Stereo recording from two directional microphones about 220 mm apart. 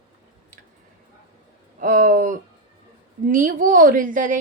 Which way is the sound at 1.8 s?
35° right (ahead or behind).